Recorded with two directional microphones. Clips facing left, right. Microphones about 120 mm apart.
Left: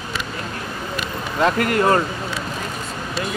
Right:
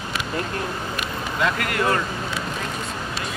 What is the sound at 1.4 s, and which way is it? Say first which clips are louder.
Speech: left 6 dB; 35° left (ahead or behind).